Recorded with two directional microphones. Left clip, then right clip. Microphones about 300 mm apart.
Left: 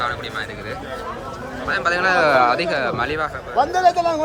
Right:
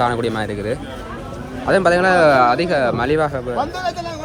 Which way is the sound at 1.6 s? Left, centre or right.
Centre.